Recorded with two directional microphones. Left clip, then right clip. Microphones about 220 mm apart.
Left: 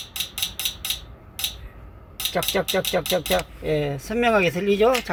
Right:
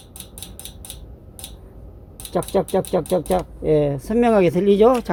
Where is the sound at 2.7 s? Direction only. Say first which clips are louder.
Right 2 dB; 30° right (ahead or behind).